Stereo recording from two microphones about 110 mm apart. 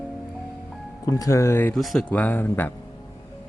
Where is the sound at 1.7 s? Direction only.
5° left (ahead or behind).